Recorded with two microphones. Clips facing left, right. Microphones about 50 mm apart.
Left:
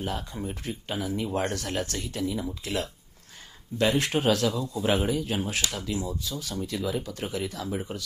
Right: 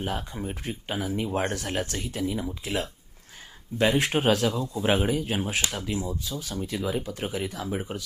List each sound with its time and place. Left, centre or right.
0.0 s speech: centre